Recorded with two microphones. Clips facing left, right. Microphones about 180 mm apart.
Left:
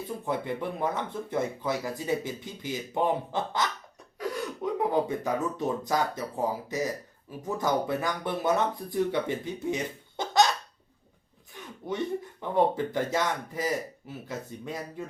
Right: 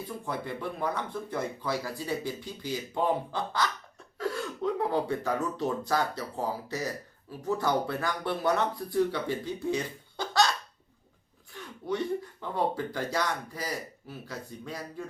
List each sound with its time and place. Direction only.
0.3 s speech: 20° left (ahead or behind)
11.5 s speech: 20° left (ahead or behind)